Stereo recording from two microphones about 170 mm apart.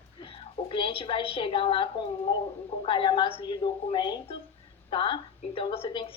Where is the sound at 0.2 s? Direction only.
30° left (ahead or behind).